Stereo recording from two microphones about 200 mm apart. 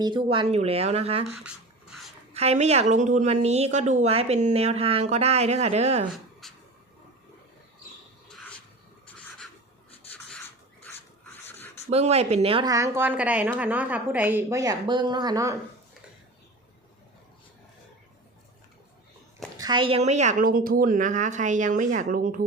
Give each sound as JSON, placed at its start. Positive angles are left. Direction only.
{"t": 0.0, "sound": "speech", "side_deg": -25}
{"t": 1.5, "sound": "a sound", "side_deg": 0}
{"t": 2.3, "sound": "a woman's voice", "side_deg": -30}
{"t": 6.4, "sound": "a sound", "side_deg": 0}
{"t": 10.8, "sound": "filing", "side_deg": 10}
{"t": 11.9, "sound": "a woman's voice", "side_deg": -30}
{"t": 12.7, "sound": "a woman's voice", "side_deg": -15}
{"t": 19.5, "sound": "a woman's voice", "side_deg": -20}